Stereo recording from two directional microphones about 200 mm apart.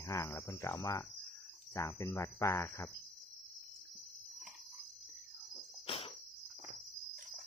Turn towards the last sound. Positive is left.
turn(degrees=30)  # may be behind; listen again after turning